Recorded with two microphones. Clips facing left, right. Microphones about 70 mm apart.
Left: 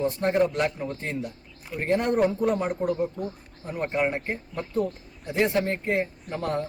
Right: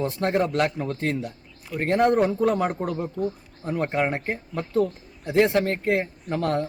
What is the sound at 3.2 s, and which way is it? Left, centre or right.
Speech, centre.